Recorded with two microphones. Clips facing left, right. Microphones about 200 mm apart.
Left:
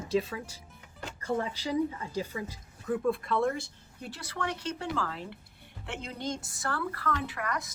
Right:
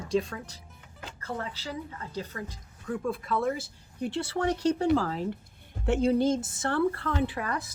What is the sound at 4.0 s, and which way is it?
A woman's voice, 25° right (ahead or behind).